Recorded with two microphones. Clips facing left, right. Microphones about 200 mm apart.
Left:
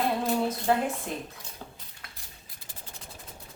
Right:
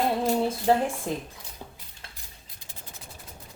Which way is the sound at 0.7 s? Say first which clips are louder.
Right 4 dB; 30° right (ahead or behind).